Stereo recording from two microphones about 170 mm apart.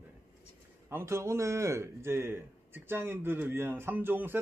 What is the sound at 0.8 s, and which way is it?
A man's voice, 15° right (ahead or behind).